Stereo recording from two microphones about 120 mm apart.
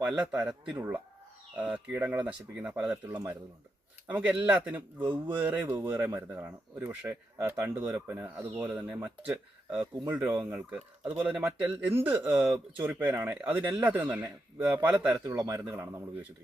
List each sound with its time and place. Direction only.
0.2 s speech: 10° right (ahead or behind)
8.5 s speech: 10° right (ahead or behind)
11.3 s speech: 5° right (ahead or behind)
11.9 s speech: 20° right (ahead or behind)
15.4 s speech: 25° right (ahead or behind)